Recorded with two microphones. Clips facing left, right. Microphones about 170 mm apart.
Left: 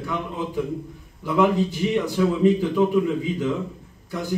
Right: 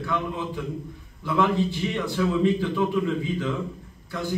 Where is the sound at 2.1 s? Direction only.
10° left (ahead or behind).